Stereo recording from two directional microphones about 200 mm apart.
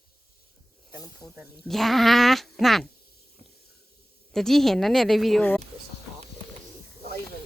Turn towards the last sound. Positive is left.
turn(degrees=5)  # may be behind; listen again after turning